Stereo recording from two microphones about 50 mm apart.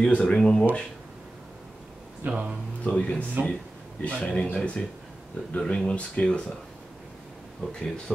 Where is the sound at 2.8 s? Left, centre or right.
Left.